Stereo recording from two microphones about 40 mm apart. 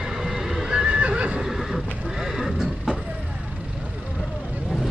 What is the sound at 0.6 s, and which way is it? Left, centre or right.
Neigh, right.